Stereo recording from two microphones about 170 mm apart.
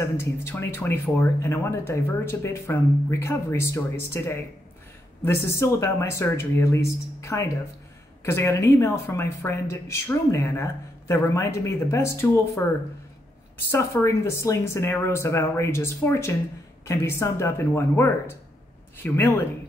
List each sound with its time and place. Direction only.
0.0 s speech: 15° left (ahead or behind)